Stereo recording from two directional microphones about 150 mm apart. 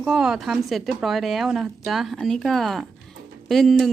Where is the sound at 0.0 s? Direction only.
5° right (ahead or behind).